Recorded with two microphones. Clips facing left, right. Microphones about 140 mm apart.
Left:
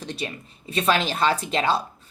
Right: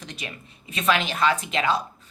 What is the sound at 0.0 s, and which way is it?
Speech, 35° left (ahead or behind).